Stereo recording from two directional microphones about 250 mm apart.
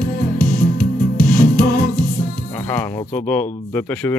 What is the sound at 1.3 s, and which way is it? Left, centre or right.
Music, left.